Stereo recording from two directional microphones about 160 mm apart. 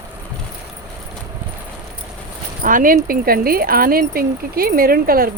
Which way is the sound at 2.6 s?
60° right (ahead or behind).